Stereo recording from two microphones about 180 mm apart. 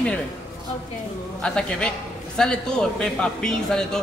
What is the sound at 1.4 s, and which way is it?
A man's voice, 5° left (ahead or behind).